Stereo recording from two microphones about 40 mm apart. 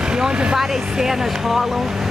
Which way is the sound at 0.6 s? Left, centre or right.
Centre.